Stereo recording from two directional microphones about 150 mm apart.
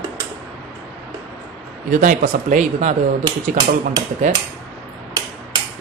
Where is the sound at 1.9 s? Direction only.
65° right (ahead or behind).